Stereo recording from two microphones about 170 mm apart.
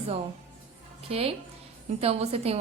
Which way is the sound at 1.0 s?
35° right (ahead or behind).